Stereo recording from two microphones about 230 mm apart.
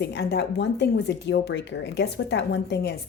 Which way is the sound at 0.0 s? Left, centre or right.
Left.